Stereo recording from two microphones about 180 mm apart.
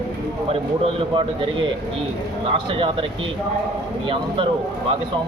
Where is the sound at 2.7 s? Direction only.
30° right (ahead or behind).